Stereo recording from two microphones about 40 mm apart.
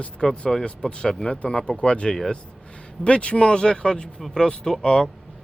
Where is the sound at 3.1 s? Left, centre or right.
Left.